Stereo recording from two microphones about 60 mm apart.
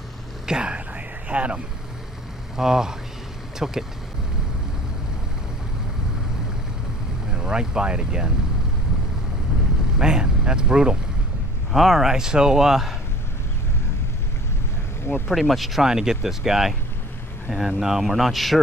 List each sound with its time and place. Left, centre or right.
0.5 s a sound: centre
2.5 s speech: centre
7.3 s speech: centre
9.9 s speech: centre
11.7 s speech: centre
15.2 s speech: centre